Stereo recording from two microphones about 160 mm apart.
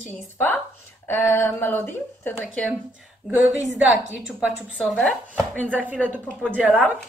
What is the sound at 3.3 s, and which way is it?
A woman's voice, 5° right (ahead or behind).